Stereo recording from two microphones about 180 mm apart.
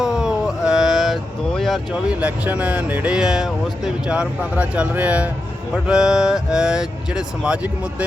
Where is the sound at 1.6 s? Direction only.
Centre (ahead or behind).